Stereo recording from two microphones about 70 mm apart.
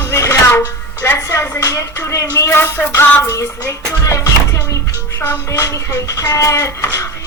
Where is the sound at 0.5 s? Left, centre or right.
Left.